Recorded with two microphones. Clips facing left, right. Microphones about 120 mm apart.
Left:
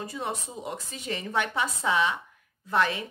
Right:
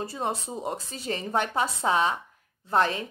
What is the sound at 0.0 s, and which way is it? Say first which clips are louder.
Speech: right 3 dB; 35° right (ahead or behind).